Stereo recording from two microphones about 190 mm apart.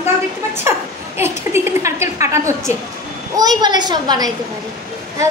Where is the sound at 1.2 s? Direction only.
15° right (ahead or behind).